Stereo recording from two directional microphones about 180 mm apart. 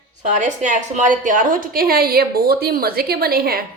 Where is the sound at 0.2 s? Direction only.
45° right (ahead or behind).